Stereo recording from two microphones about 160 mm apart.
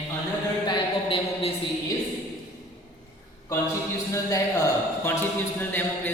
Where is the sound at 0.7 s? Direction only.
30° left (ahead or behind).